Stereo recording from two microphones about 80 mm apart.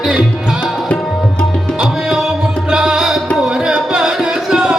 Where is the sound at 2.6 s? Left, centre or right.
Centre.